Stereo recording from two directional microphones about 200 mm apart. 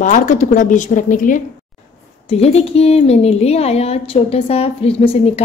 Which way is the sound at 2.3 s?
30° left (ahead or behind).